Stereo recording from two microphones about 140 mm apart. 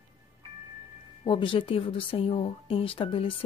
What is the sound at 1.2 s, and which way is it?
Speech, 35° left (ahead or behind).